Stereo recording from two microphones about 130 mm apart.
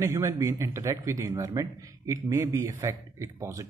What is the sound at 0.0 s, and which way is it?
A man's voice, 25° right (ahead or behind).